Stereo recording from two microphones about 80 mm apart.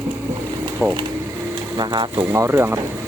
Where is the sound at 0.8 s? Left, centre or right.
Centre.